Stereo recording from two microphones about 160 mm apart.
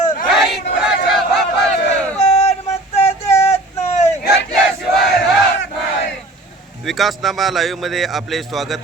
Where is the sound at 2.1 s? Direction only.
45° left (ahead or behind).